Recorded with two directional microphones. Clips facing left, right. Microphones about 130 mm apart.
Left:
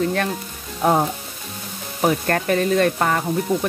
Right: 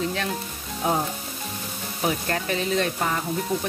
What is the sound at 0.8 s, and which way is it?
Frying, 65° left (ahead or behind).